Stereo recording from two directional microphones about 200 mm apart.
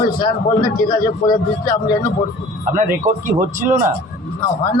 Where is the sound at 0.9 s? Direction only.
20° left (ahead or behind).